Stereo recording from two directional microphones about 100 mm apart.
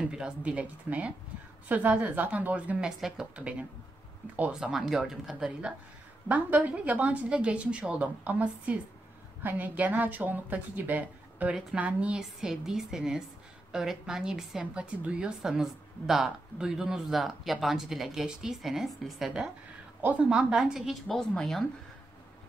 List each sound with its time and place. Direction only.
0.0 s a woman's voice: 10° right (ahead or behind)
6.2 s a woman's voice: 15° right (ahead or behind); by 21.6 s 5° left (ahead or behind)